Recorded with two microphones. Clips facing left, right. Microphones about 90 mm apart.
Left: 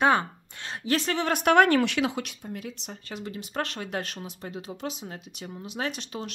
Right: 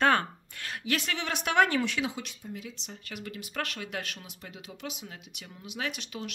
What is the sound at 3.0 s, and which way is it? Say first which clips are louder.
Speech: left 2 dB; 30° left (ahead or behind).